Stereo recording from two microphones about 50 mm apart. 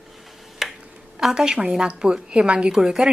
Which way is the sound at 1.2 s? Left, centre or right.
Centre.